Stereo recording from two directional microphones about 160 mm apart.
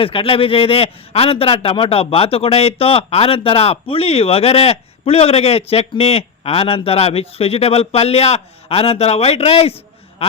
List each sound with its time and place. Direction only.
0.0 s a man's voice: 35° left (ahead or behind)